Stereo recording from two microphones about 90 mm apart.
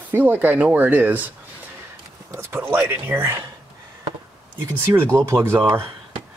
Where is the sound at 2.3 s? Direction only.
25° right (ahead or behind).